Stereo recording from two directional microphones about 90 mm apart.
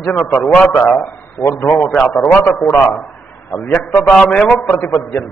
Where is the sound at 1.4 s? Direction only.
30° left (ahead or behind).